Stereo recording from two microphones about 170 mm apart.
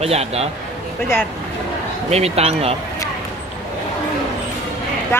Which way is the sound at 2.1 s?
40° right (ahead or behind).